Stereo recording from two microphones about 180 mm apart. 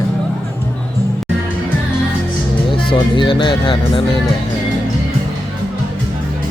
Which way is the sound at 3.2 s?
25° left (ahead or behind).